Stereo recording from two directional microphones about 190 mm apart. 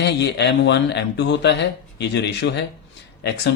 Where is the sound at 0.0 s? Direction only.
65° left (ahead or behind).